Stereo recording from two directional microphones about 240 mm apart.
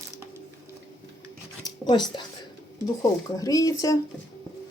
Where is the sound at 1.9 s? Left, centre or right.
Centre.